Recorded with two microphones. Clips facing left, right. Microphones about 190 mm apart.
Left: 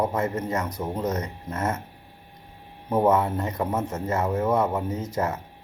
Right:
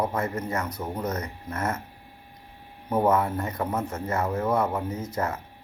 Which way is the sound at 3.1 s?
20° left (ahead or behind).